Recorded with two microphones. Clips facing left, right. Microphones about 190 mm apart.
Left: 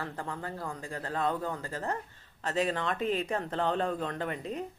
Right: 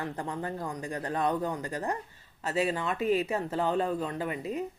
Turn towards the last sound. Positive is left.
turn(degrees=-5)  # may be behind; listen again after turning